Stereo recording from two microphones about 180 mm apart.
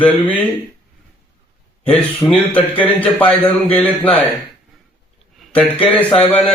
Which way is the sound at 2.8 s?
10° left (ahead or behind).